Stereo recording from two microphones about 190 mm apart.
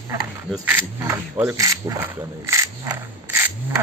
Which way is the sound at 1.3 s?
10° right (ahead or behind).